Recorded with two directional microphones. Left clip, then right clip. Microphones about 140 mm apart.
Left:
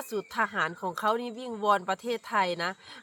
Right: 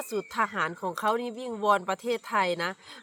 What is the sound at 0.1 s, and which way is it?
Speech, centre (ahead or behind).